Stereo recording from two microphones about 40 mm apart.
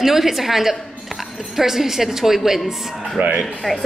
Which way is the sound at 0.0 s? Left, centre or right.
Centre.